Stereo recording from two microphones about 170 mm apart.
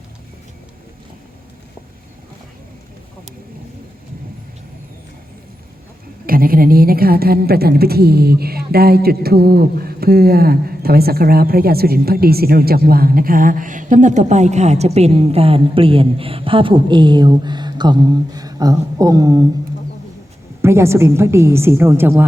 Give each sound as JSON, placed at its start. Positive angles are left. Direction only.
{"t": 6.2, "sound": "a woman's voice", "side_deg": -60}
{"t": 20.6, "sound": "a woman's voice", "side_deg": -15}